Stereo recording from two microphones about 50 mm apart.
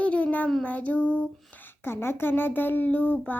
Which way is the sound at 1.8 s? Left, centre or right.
Left.